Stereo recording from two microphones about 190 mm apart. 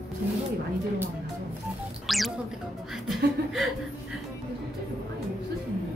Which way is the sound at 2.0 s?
Centre (ahead or behind).